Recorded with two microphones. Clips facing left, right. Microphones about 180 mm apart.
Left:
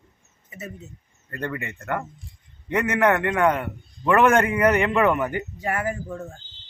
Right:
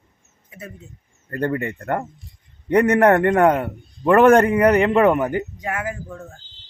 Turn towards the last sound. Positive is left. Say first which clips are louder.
# left 2 dB
turn(degrees=10)  # may be behind; listen again after turning